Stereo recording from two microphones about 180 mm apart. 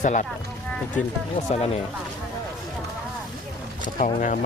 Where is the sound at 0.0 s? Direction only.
45° left (ahead or behind).